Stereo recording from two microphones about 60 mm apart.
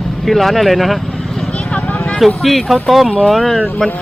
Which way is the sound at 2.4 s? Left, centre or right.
Centre.